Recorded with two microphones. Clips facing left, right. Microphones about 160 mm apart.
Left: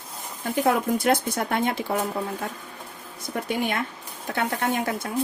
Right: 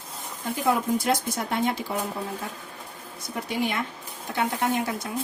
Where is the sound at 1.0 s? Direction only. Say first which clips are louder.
Left 3 dB; 60° left (ahead or behind).